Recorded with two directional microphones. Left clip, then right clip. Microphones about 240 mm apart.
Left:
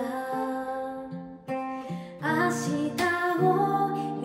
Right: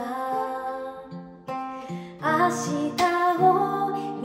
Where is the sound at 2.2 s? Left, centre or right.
Centre.